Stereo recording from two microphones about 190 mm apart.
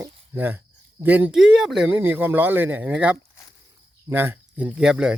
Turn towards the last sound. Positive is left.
turn(degrees=-5)  # may be behind; listen again after turning